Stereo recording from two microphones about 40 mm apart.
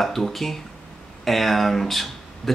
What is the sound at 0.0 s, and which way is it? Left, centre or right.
Speech, centre.